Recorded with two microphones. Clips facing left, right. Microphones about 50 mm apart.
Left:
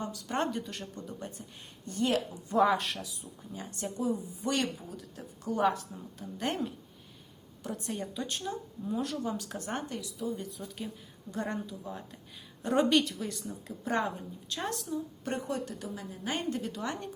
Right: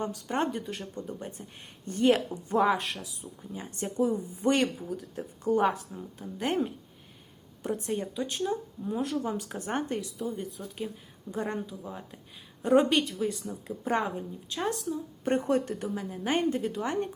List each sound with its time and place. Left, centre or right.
0.0 s a woman's voice: right
0.3 s speech: centre; by 2.6 s right
2.6 s speech: centre
3.8 s a woman's voice: right
5.9 s speech: centre
7.6 s a woman's voice: right
8.0 s speech: centre
9.2 s speech: right
10.6 s speech: centre
11.9 s speech: centre
14.6 s a woman's voice: centre
15.2 s a woman's voice: right